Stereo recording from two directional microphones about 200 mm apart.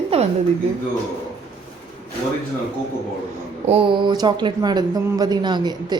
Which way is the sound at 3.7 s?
25° right (ahead or behind).